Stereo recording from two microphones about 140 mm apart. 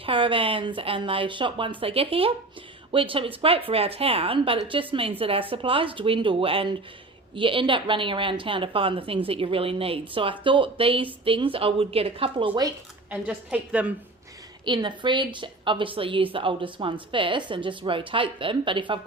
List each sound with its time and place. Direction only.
0.0 s a woman's voice: 40° right (ahead or behind)
13.1 s a woman's voice: 10° right (ahead or behind)
14.6 s a woman's voice: 35° right (ahead or behind)